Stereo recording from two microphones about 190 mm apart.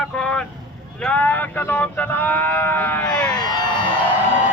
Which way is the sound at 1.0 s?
10° left (ahead or behind).